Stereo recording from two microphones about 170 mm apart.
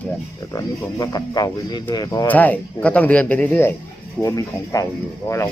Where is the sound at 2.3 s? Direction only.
10° left (ahead or behind).